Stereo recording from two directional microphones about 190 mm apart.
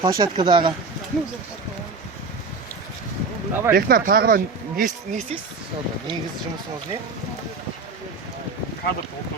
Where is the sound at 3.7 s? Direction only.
50° right (ahead or behind).